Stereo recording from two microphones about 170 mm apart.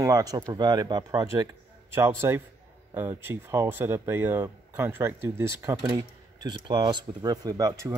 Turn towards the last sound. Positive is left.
turn(degrees=-20)  # may be behind; listen again after turning